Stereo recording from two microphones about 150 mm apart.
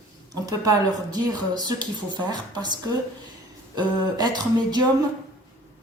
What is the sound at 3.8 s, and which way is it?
Speech, 25° right (ahead or behind).